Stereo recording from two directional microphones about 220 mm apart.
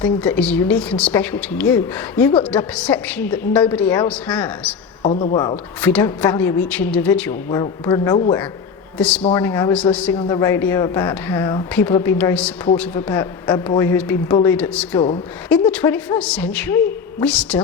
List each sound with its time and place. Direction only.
0.0 s a woman's voice: 5° left (ahead or behind)
5.2 s speech: 25° left (ahead or behind)
5.8 s a woman's voice: 10° left (ahead or behind)
9.0 s a woman's voice: 5° left (ahead or behind)